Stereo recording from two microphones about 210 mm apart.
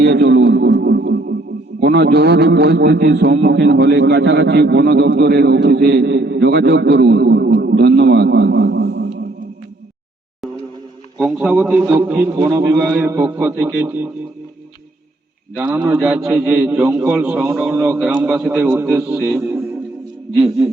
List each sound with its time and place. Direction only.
0.0 s radio: 50° right (ahead or behind)
1.8 s a man's voice: 50° right (ahead or behind)
11.2 s a man's voice: 5° right (ahead or behind)
15.7 s a man's voice: 10° right (ahead or behind)